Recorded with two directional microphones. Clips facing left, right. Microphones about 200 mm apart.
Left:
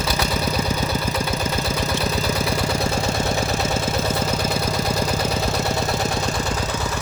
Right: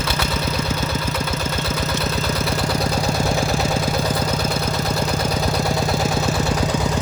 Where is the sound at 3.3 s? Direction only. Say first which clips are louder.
Right 2 dB; centre (ahead or behind).